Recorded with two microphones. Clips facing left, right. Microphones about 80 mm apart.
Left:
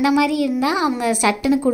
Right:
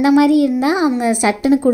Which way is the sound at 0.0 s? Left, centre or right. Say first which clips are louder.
Right 6 dB; right.